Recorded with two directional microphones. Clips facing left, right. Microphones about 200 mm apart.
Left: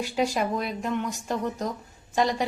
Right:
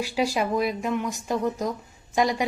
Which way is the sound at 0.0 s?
5° right (ahead or behind).